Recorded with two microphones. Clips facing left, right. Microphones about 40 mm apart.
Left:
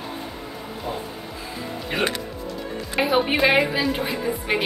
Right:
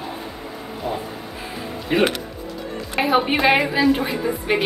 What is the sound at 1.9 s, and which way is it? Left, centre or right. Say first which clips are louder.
A woman's voice: right 6 dB; centre.